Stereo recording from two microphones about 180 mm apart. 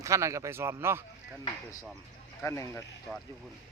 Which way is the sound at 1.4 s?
20° left (ahead or behind).